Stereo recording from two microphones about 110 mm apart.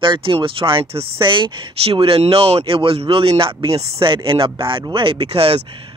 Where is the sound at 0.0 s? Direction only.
50° right (ahead or behind).